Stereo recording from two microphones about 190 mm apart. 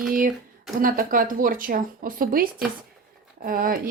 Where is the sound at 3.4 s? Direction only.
50° right (ahead or behind).